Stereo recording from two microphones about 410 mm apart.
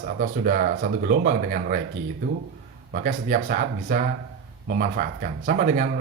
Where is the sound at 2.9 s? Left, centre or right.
Centre.